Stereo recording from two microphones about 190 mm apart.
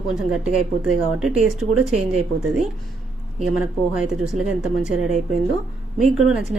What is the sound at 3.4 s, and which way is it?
Speech, 5° right (ahead or behind).